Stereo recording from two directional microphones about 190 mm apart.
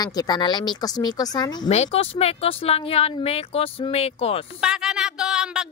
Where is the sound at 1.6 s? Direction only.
35° left (ahead or behind).